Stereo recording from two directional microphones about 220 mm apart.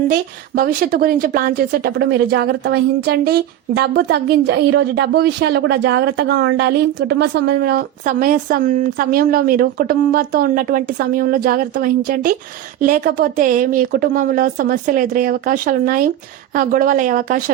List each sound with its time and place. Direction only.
0.1 s a woman's voice: 40° right (ahead or behind)